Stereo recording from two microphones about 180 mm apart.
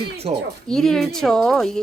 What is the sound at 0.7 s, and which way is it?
Speech, centre (ahead or behind).